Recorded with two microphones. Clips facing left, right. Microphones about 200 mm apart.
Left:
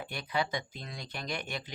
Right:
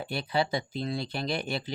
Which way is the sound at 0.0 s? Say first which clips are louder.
Right 5 dB; 30° right (ahead or behind).